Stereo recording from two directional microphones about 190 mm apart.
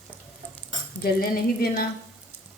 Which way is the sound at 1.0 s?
55° left (ahead or behind).